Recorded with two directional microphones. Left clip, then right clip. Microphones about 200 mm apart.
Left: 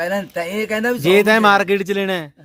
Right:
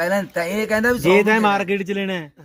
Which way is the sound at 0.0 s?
10° left (ahead or behind).